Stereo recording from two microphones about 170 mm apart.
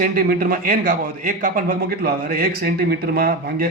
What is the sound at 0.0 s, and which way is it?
A man's voice, 55° right (ahead or behind).